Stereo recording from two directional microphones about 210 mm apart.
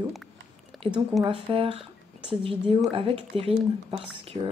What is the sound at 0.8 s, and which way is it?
Speech, 25° right (ahead or behind).